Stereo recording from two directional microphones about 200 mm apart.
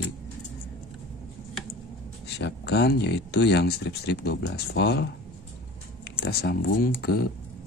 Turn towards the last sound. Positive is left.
turn(degrees=50)  # may be behind; listen again after turning